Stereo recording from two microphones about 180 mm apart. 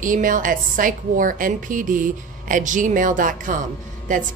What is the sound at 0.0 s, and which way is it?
A woman's voice, 45° right (ahead or behind).